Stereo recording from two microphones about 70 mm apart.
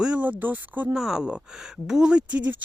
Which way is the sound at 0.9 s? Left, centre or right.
Centre.